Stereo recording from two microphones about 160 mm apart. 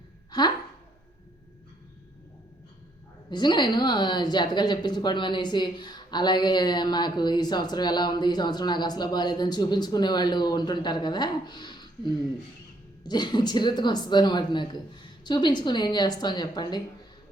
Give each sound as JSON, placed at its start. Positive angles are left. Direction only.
{"t": 0.3, "sound": "speech", "side_deg": 25}
{"t": 3.2, "sound": "a woman's voice", "side_deg": 30}